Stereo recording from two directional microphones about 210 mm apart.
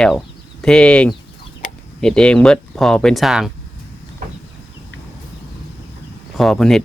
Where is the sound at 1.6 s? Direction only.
40° left (ahead or behind).